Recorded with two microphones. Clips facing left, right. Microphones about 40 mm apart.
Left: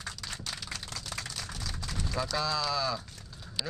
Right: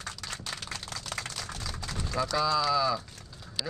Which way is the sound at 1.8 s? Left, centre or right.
Right.